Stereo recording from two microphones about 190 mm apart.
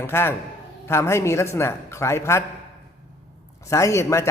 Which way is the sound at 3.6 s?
15° left (ahead or behind).